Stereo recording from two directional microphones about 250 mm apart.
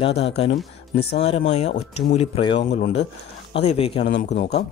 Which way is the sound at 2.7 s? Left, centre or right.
Left.